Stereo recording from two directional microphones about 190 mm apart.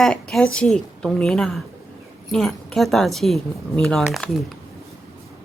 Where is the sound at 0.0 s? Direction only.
5° left (ahead or behind).